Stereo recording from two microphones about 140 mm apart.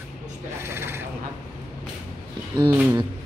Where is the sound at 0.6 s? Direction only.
20° right (ahead or behind).